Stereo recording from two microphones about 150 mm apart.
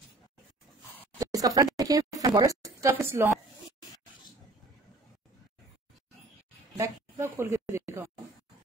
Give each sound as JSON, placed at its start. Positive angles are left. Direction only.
{"t": 1.2, "sound": "a woman's voice", "side_deg": -25}
{"t": 6.8, "sound": "a woman's voice", "side_deg": -15}